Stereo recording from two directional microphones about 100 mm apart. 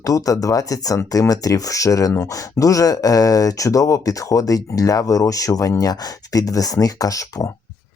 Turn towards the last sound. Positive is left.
turn(degrees=35)  # may be behind; listen again after turning